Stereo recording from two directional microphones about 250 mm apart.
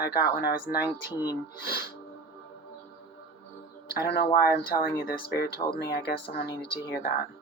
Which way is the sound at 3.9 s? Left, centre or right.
Left.